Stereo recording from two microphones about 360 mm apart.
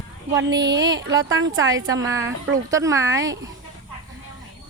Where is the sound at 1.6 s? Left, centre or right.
Centre.